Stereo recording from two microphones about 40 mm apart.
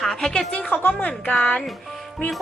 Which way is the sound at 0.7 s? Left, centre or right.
Left.